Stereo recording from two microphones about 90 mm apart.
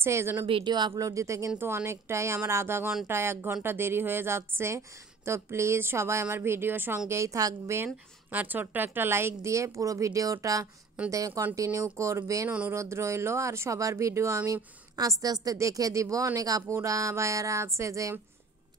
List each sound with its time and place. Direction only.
0.0 s speech: 30° right (ahead or behind)
0.7 s speech: 55° right (ahead or behind); by 7.0 s 25° right (ahead or behind)
7.1 s speech: 35° right (ahead or behind)
8.3 s speech: 20° right (ahead or behind); by 12.4 s 35° right (ahead or behind)
12.4 s speech: 15° right (ahead or behind)
12.7 s speech: 30° right (ahead or behind)